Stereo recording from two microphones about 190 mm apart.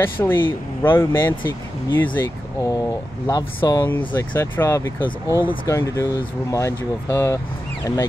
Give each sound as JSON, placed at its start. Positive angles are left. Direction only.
{"t": 0.0, "sound": "speech", "side_deg": 10}